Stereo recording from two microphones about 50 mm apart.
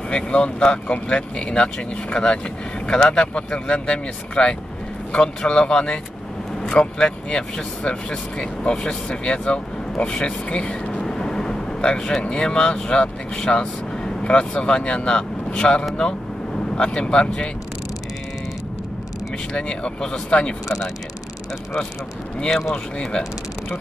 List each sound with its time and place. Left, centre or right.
0.1 s speech: centre
11.1 s vehicle: centre
11.8 s speech: centre
19.5 s speech: centre
22.5 s speech: centre